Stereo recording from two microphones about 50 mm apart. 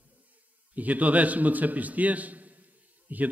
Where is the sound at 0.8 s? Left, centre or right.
Right.